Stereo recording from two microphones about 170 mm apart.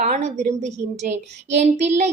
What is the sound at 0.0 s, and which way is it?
A woman's voice, 45° right (ahead or behind).